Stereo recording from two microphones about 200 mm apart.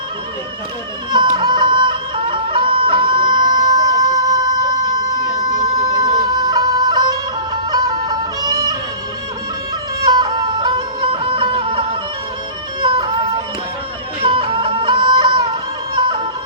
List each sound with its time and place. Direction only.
1.4 s music: 20° right (ahead or behind)
10.1 s music: 20° right (ahead or behind)
14.2 s music: 25° right (ahead or behind)